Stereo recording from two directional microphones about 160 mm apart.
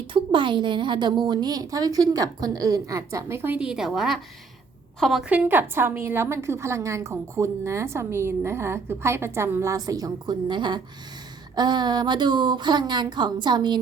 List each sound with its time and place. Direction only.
0.1 s a woman's voice: 30° right (ahead or behind); by 5.2 s centre (ahead or behind)
5.3 s a woman's voice: 10° right (ahead or behind); by 13.7 s 30° right (ahead or behind)